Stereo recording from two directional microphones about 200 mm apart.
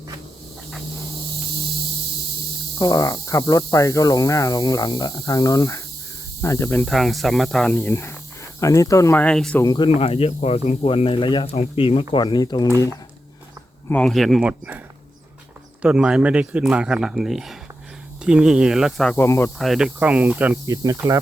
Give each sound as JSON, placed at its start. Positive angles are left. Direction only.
{"t": 2.7, "sound": "speech", "side_deg": 15}
{"t": 4.9, "sound": "speech", "side_deg": 25}
{"t": 9.6, "sound": "speech", "side_deg": 20}
{"t": 15.8, "sound": "speech", "side_deg": -5}
{"t": 19.1, "sound": "speech", "side_deg": 10}
{"t": 19.5, "sound": "cricket", "side_deg": 0}